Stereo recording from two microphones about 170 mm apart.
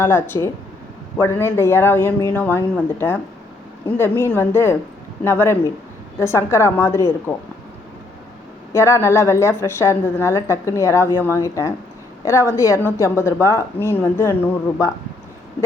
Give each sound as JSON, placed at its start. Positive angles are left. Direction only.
{"t": 0.0, "sound": "a woman's voice", "side_deg": 15}
{"t": 8.7, "sound": "a woman's voice", "side_deg": 15}